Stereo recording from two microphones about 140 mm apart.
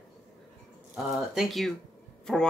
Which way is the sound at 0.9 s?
Centre (ahead or behind).